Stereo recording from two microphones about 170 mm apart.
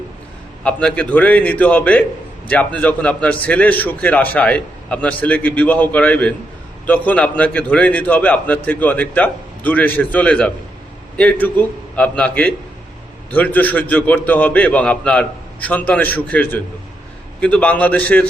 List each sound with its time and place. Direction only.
0.6 s a man's voice: 5° left (ahead or behind)